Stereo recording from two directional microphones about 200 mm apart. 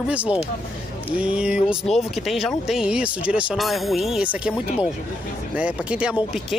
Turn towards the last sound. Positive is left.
turn(degrees=-5)  # may be behind; listen again after turning